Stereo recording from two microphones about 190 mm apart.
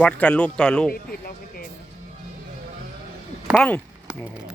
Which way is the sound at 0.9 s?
50° left (ahead or behind).